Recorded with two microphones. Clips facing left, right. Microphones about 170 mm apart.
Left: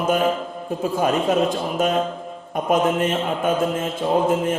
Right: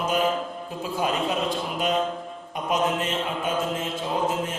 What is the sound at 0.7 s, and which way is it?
A man's voice, 50° left (ahead or behind).